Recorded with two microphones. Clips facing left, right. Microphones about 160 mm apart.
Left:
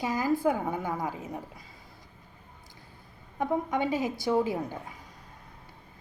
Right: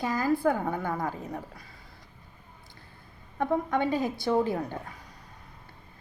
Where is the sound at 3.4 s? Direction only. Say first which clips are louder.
Right 1 dB; 15° left (ahead or behind).